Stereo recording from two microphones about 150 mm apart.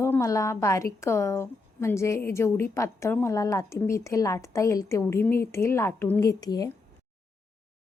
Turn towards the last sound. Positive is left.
turn(degrees=25)  # may be behind; listen again after turning